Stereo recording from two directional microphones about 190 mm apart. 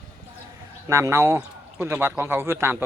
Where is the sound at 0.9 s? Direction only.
15° right (ahead or behind).